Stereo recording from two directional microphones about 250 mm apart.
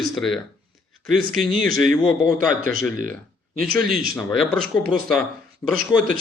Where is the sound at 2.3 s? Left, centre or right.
Right.